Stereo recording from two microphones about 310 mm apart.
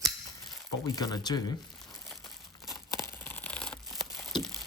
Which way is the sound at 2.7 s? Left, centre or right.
Centre.